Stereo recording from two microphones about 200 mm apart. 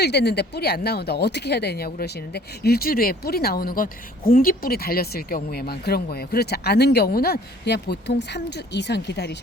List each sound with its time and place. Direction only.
0.0 s speech: 55° left (ahead or behind)